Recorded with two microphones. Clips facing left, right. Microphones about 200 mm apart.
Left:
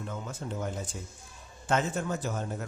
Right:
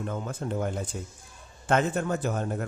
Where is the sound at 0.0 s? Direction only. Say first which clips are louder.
Right 5 dB; 55° right (ahead or behind).